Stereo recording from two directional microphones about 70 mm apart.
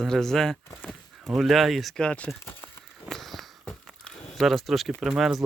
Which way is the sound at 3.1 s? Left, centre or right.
Centre.